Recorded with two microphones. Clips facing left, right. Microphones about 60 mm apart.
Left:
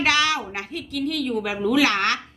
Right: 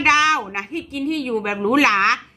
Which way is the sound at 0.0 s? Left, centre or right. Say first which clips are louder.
Right 5 dB; right.